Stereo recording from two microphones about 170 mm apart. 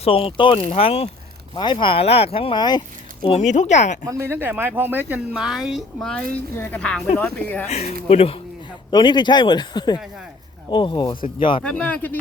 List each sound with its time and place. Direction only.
0.0 s speech: 35° left (ahead or behind)
3.4 s speech: 45° left (ahead or behind)
4.0 s speech: 15° right (ahead or behind); by 7.7 s 10° left (ahead or behind)
7.7 s speech: 40° left (ahead or behind)
11.6 s speech: 5° left (ahead or behind)